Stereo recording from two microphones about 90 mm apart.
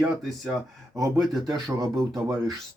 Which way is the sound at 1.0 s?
40° right (ahead or behind).